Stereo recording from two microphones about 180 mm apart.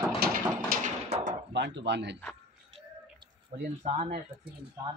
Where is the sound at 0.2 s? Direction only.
60° right (ahead or behind).